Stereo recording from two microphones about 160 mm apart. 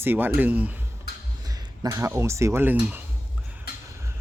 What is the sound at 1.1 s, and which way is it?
Music, 90° left.